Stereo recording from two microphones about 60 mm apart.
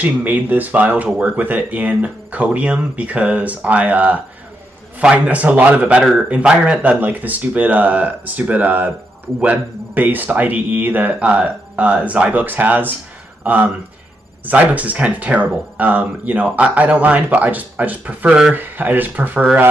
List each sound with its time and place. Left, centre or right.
0.0 s speech: right
6.8 s speech: right
18.5 s speech: right